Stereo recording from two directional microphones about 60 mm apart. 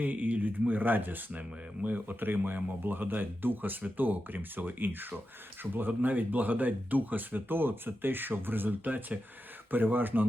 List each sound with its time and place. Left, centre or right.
0.0 s speech: right